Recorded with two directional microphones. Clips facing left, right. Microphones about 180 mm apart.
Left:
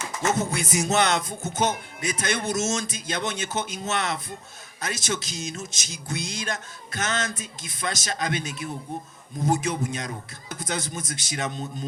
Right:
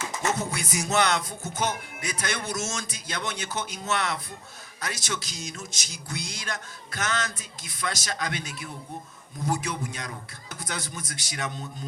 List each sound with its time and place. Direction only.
0.3 s music: 20° left (ahead or behind)